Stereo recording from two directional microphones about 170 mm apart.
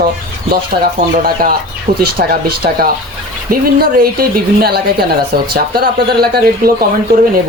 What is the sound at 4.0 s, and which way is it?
Speech, 60° right (ahead or behind).